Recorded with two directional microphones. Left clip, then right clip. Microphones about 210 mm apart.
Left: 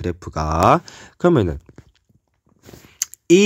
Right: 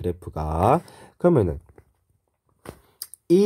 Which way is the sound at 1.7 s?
70° left (ahead or behind).